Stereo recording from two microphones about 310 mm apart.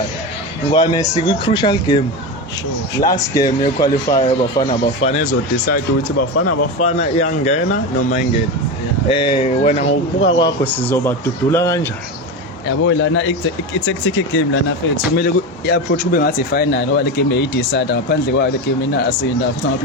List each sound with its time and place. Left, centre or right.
0.7 s speech: centre
3.0 s speech: centre
6.1 s speech: left
6.8 s speech: left
9.0 s speech: centre
12.8 s speech: left